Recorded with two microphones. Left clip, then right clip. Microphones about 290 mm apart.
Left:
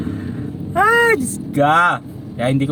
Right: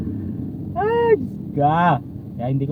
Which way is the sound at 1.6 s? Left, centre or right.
Left.